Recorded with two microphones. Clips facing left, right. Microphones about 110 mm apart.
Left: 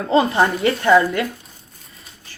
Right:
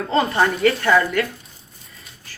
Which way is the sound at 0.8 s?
20° left (ahead or behind).